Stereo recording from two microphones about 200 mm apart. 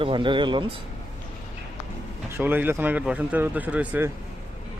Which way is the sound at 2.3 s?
10° right (ahead or behind).